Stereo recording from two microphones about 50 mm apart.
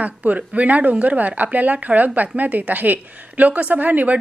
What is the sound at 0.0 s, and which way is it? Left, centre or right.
Speech, right.